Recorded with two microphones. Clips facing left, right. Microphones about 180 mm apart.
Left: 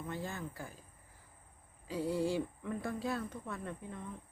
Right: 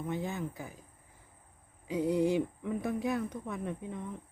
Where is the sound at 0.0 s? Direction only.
20° right (ahead or behind).